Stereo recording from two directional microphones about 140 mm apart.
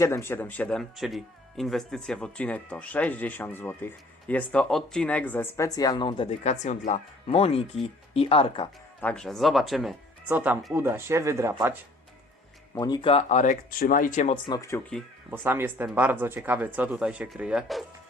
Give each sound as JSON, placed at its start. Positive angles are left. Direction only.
{"t": 0.0, "sound": "speech", "side_deg": 20}
{"t": 6.4, "sound": "speech", "side_deg": 55}
{"t": 9.0, "sound": "speech", "side_deg": 10}
{"t": 10.2, "sound": "speech", "side_deg": -10}
{"t": 12.7, "sound": "speech", "side_deg": 30}
{"t": 14.4, "sound": "speech", "side_deg": 25}
{"t": 15.3, "sound": "speech", "side_deg": -15}